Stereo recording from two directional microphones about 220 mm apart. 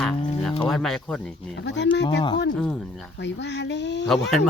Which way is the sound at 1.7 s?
50° left (ahead or behind).